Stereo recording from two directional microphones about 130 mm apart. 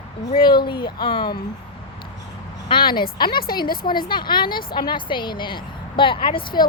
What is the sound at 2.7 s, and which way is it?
A woman's voice, 35° left (ahead or behind).